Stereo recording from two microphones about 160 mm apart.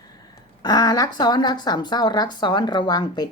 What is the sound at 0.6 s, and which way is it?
Speech, 25° left (ahead or behind).